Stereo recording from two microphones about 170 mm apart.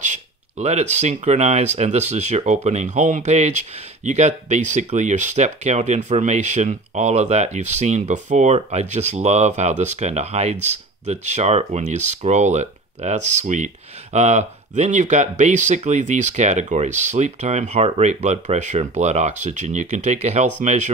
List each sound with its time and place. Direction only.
0.0 s speech: 40° right (ahead or behind)